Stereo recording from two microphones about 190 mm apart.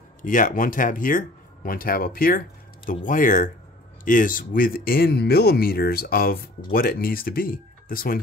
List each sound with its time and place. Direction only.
0.2 s speech: 45° left (ahead or behind)